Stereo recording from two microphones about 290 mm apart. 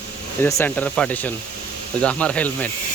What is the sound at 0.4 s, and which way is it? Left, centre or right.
Speech, centre.